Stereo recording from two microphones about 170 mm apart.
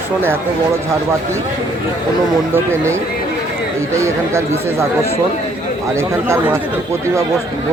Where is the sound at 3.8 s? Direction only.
15° right (ahead or behind).